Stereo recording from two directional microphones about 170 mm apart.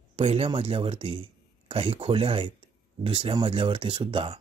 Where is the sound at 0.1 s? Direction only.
35° right (ahead or behind).